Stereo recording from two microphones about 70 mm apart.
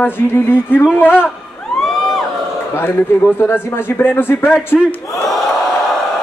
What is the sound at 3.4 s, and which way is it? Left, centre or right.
Speech, left.